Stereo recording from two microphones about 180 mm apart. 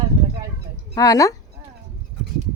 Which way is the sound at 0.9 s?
20° left (ahead or behind).